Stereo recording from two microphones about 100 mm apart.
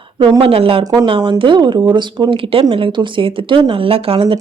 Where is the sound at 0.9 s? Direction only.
50° right (ahead or behind).